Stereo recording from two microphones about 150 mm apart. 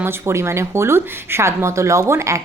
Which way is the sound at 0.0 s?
15° right (ahead or behind).